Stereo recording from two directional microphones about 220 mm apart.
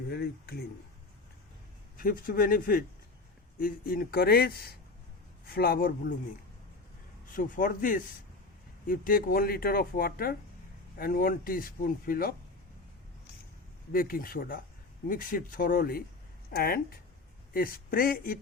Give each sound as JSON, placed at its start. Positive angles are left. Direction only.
{"t": 0.1, "sound": "speech", "side_deg": 45}
{"t": 2.0, "sound": "speech", "side_deg": 40}
{"t": 7.3, "sound": "speech", "side_deg": 40}
{"t": 13.9, "sound": "speech", "side_deg": 40}